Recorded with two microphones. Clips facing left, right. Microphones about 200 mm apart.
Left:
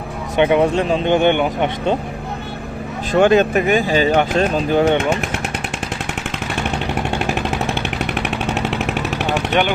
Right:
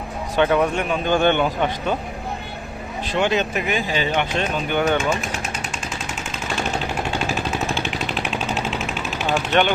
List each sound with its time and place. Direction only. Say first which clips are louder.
0.3 s speech: left 4 dB; 20° left (ahead or behind)
3.1 s speech: left 8 dB; 50° left (ahead or behind); by 4.9 s 30° left (ahead or behind)
4.9 s speech: left 4 dB; 65° left (ahead or behind)
7.3 s a sound: left 3 dB; 60° left (ahead or behind)
9.5 s speech: even; 10° left (ahead or behind)